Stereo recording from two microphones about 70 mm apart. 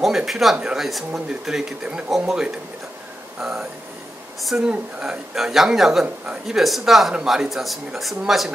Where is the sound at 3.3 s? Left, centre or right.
Centre.